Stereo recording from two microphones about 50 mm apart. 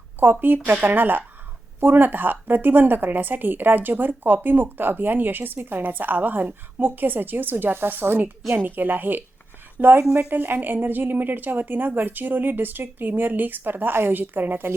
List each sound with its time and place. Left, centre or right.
0.2 s speech: right